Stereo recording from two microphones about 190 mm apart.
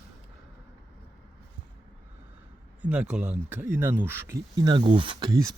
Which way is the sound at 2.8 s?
5° right (ahead or behind).